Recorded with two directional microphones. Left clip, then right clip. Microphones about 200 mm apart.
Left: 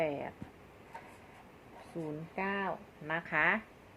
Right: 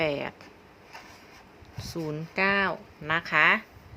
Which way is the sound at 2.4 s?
45° right (ahead or behind).